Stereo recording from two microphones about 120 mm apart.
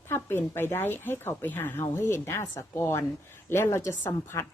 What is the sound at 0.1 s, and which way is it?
Speech, 20° left (ahead or behind).